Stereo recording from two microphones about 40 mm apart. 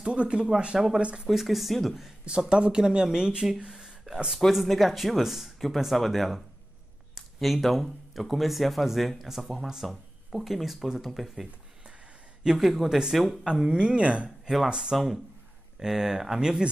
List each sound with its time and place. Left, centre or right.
0.0 s speech: right
1.3 s speech: centre
2.2 s speech: right; by 11.2 s centre
12.4 s speech: centre
13.5 s speech: centre
14.7 s speech: centre